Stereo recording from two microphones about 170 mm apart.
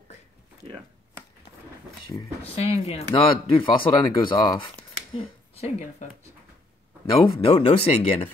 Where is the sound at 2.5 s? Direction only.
35° left (ahead or behind).